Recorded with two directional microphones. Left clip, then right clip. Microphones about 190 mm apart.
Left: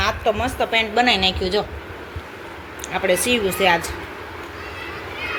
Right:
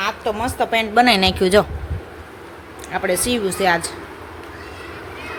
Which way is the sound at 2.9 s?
10° right (ahead or behind).